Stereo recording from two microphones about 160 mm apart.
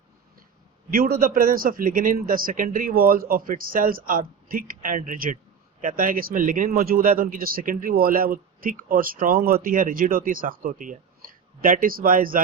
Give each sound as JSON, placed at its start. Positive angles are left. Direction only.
{"t": 0.9, "sound": "speech", "side_deg": -65}